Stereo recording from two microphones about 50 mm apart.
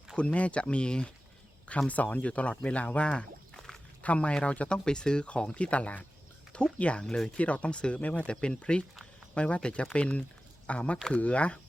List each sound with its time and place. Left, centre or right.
0.2 s speech: left
1.9 s speech: left
4.9 s speech: centre